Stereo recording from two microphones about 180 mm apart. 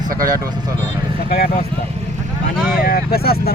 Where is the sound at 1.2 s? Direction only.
55° left (ahead or behind).